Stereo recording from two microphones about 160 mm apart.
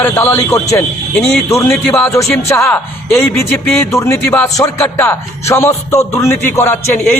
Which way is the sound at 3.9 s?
20° left (ahead or behind).